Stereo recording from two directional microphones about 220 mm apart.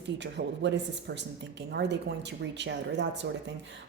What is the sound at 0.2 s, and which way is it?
A woman's voice, 50° right (ahead or behind).